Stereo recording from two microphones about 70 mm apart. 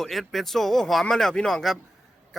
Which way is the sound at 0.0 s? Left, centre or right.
Centre.